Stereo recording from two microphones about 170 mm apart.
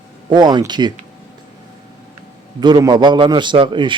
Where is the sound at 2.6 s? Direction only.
25° right (ahead or behind).